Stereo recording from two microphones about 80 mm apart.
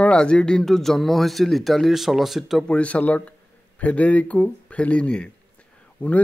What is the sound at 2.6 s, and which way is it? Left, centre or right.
A man's voice, centre.